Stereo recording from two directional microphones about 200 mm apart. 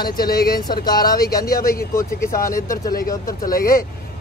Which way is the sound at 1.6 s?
45° left (ahead or behind).